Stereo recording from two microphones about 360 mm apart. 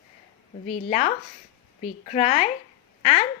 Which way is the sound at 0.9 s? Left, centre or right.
Centre.